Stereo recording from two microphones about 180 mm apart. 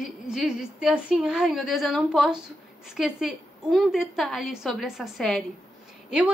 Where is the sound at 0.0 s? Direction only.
Centre (ahead or behind).